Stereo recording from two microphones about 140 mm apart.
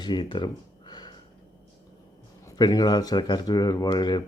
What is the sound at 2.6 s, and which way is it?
Speech, 30° left (ahead or behind).